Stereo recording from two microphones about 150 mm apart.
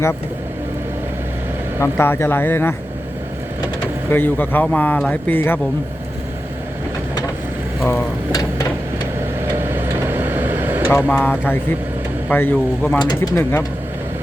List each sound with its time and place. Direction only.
1.8 s speech: 15° left (ahead or behind)
4.1 s speech: 10° left (ahead or behind)
8.3 s a sound: 25° left (ahead or behind)
9.6 s vehicle: 15° right (ahead or behind)
11.1 s speech: 15° left (ahead or behind)